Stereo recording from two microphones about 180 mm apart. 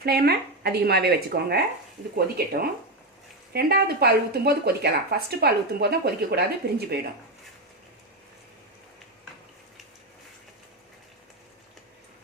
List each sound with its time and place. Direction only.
0.0 s speech: 60° right (ahead or behind)